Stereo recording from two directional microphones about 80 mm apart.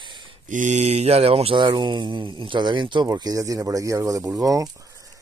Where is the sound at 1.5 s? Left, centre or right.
Right.